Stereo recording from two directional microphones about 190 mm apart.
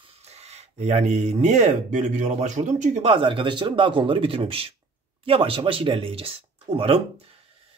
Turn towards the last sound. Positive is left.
turn(degrees=-30)  # may be behind; listen again after turning